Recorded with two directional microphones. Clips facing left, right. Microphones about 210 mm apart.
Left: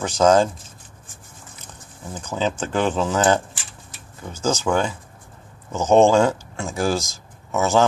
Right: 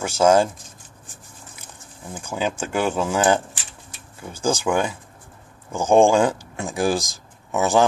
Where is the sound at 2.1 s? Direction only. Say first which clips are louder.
Left 1 dB; 10° right (ahead or behind).